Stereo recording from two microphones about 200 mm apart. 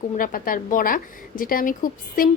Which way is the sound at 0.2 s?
45° left (ahead or behind).